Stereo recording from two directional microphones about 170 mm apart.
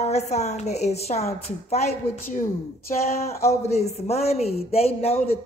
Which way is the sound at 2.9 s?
50° left (ahead or behind).